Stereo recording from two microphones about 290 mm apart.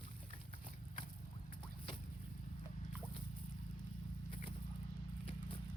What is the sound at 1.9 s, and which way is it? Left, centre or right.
Boat, centre.